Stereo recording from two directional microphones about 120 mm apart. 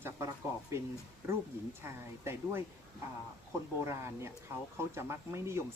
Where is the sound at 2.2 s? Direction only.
20° right (ahead or behind).